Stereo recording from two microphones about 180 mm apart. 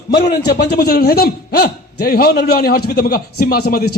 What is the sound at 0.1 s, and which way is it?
A man's voice, 65° left (ahead or behind).